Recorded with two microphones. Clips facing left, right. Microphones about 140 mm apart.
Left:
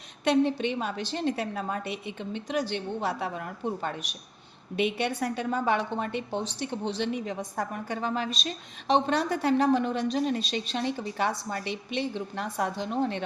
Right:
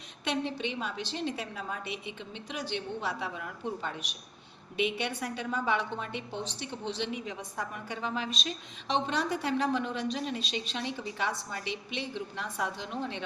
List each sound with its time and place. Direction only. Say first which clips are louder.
0.3 s a woman's voice: left 8 dB; 45° left (ahead or behind)